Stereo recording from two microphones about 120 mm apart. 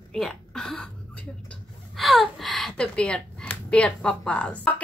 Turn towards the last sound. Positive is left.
turn(degrees=10)  # may be behind; listen again after turning